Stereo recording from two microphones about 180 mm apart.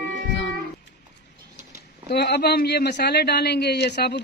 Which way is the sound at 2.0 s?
65° left (ahead or behind).